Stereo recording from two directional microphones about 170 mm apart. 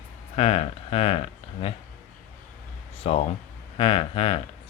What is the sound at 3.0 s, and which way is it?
Speech, 35° left (ahead or behind).